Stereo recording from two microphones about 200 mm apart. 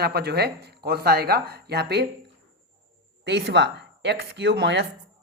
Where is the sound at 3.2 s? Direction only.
60° right (ahead or behind).